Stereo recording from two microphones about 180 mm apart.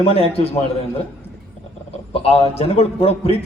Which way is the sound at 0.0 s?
35° left (ahead or behind).